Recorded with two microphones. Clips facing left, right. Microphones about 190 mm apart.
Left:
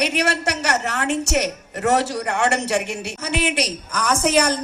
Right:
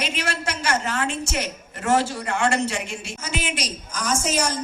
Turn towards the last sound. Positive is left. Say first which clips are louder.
# left 5 dB
turn(degrees=60)  # may be behind; listen again after turning